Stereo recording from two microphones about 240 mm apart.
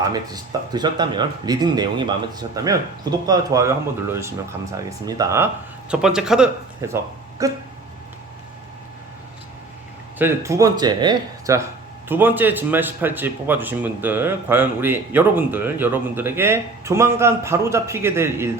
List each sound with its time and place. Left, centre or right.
0.1 s speech: centre
10.2 s speech: centre